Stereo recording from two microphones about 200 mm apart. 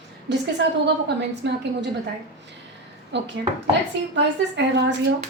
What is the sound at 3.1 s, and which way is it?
Speech, 60° right (ahead or behind).